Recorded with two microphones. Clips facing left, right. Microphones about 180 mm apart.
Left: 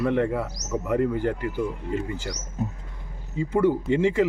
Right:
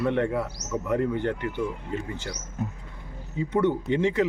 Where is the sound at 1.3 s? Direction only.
40° left (ahead or behind).